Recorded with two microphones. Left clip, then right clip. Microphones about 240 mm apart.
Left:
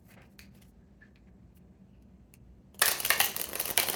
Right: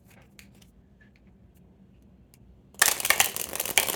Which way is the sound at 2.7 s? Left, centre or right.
Right.